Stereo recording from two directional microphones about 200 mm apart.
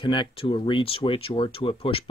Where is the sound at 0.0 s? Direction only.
25° left (ahead or behind).